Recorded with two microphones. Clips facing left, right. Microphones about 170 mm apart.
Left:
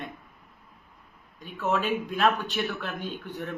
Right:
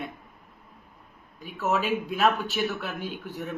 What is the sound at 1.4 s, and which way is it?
Speech, 5° right (ahead or behind).